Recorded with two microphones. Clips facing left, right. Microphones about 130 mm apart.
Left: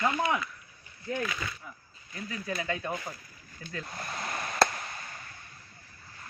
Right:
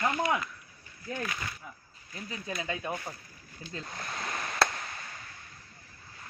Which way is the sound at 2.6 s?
20° right (ahead or behind).